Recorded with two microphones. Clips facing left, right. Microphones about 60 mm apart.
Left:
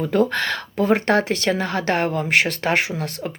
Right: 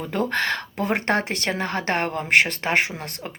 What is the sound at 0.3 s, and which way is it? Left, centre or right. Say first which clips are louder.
Speech: even; right.